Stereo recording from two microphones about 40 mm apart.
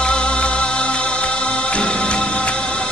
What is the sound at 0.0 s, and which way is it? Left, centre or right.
Music, left.